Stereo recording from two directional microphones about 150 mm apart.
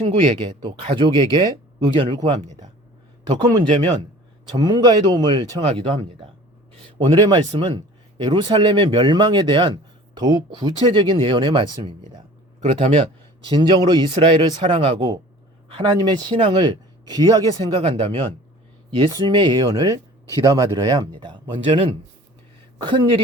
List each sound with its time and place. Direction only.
0.0 s speech: 40° right (ahead or behind)
21.7 s speech: 40° right (ahead or behind)